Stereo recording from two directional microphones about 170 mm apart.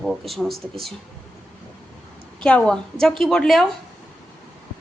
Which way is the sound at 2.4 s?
5° left (ahead or behind).